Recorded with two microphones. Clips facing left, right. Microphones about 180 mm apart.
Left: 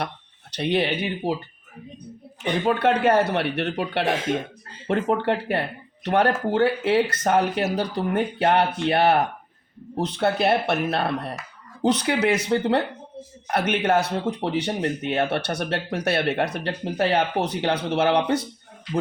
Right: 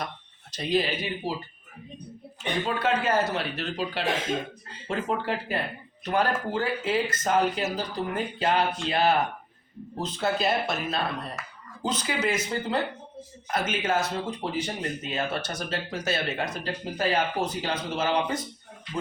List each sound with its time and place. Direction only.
0.5 s speech: 65° left (ahead or behind)
2.6 s speech: 65° left (ahead or behind)